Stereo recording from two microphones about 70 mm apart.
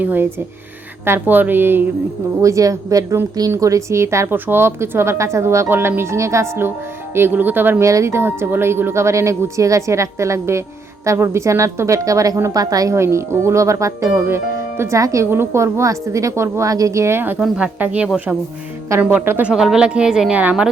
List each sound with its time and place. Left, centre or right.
0.0 s a woman's voice: right
2.4 s speech: right
4.3 s a woman's voice: right
7.9 s a woman's voice: right
12.9 s speech: right
14.2 s speech: right
15.3 s speech: right
17.6 s a woman's voice: right
19.1 s a woman's voice: right
19.5 s speech: centre
20.3 s a woman's voice: right